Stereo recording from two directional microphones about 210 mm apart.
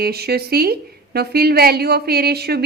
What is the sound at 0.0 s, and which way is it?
A woman's voice, 50° right (ahead or behind).